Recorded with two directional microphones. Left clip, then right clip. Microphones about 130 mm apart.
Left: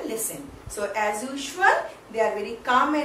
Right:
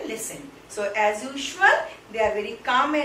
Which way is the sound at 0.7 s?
15° left (ahead or behind).